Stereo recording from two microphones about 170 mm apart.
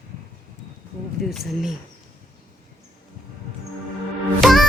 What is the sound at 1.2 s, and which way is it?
Speech, centre (ahead or behind).